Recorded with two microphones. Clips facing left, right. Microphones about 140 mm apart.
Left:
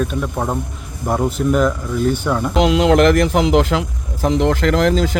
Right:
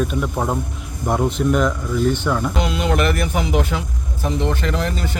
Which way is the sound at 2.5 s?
90° left.